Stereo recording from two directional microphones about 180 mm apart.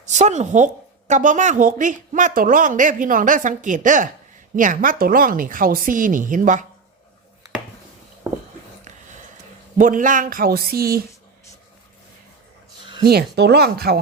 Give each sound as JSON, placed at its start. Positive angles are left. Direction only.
{"t": 0.0, "sound": "a woman's voice", "side_deg": -40}
{"t": 9.7, "sound": "a woman's voice", "side_deg": -45}
{"t": 12.8, "sound": "a sound", "side_deg": -25}
{"t": 13.1, "sound": "speech", "side_deg": -65}